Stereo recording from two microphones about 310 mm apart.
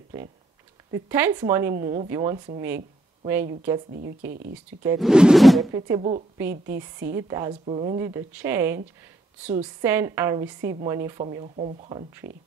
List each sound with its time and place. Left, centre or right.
0.9 s a woman's voice: centre
4.3 s speech: right
4.8 s a sound: centre
5.8 s a woman's voice: centre